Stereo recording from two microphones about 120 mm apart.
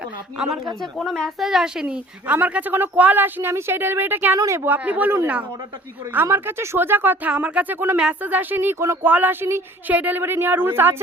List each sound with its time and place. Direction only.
0.3 s a woman's voice: 5° right (ahead or behind)